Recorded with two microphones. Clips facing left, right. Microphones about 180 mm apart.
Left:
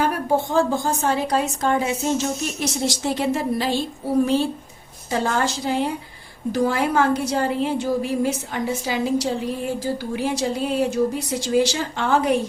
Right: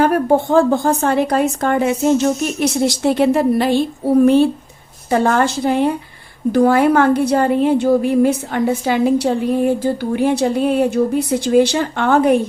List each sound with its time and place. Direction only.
0.0 s a woman's voice: 55° right (ahead or behind)